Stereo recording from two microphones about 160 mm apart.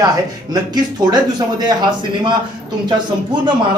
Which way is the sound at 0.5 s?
25° right (ahead or behind).